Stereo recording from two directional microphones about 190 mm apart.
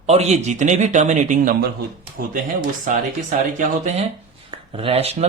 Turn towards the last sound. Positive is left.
turn(degrees=-30)  # may be behind; listen again after turning